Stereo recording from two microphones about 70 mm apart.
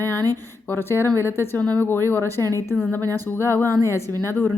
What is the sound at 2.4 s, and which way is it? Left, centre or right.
Speech, right.